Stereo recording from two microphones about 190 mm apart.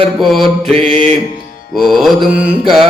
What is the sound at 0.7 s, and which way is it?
Mantra, 35° right (ahead or behind).